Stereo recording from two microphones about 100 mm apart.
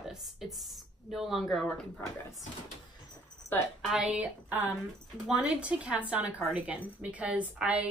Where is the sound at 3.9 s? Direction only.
10° right (ahead or behind).